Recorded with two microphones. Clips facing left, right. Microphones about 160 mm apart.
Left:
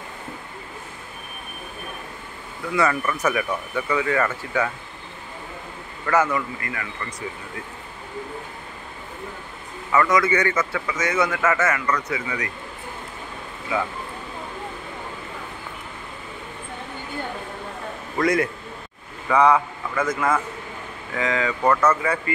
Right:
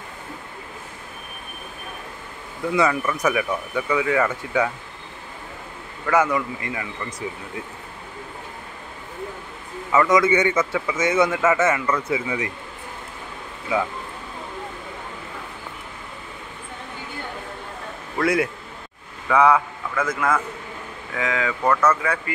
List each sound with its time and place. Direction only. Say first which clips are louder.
2.7 s speech: right 1 dB; 10° right (ahead or behind)
6.0 s speech: right 1 dB; 10° right (ahead or behind)
9.9 s a man's voice: right 2 dB; 20° right (ahead or behind)
18.1 s a man's voice: even; 5° right (ahead or behind)